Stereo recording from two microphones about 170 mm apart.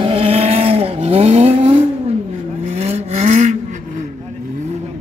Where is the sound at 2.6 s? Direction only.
40° right (ahead or behind).